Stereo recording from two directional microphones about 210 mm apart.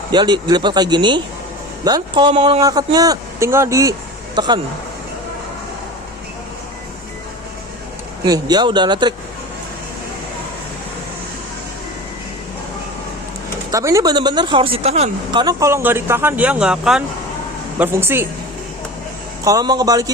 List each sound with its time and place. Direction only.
0.1 s speech: 20° right (ahead or behind)
8.2 s speech: 20° right (ahead or behind)
13.7 s speech: 15° right (ahead or behind)
19.5 s speech: 20° right (ahead or behind)